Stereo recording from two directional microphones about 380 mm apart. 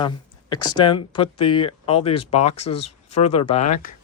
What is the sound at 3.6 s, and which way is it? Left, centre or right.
Speech, left.